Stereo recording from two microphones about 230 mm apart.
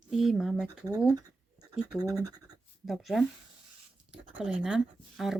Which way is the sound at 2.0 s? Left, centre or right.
Centre.